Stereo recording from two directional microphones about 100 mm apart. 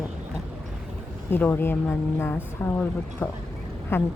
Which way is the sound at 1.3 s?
20° left (ahead or behind).